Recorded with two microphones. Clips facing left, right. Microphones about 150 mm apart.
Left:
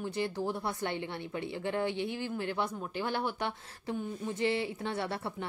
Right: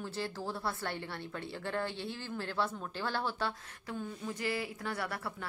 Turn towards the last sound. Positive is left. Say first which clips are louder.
# left 4 dB
turn(degrees=25)  # may be behind; listen again after turning